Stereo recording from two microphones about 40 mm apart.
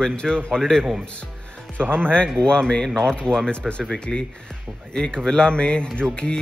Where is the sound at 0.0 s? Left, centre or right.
Centre.